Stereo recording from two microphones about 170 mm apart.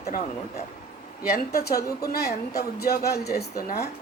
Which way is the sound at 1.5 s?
65° left (ahead or behind).